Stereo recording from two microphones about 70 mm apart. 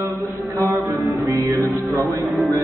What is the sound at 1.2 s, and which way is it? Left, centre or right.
Music, right.